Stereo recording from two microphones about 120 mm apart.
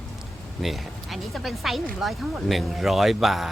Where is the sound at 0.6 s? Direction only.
Centre (ahead or behind).